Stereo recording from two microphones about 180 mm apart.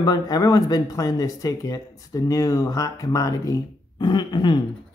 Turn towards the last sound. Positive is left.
turn(degrees=25)  # may be behind; listen again after turning